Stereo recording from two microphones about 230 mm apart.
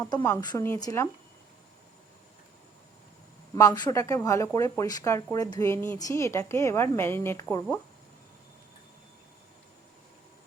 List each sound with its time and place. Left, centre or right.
0.0 s a woman's voice: centre
3.5 s a woman's voice: centre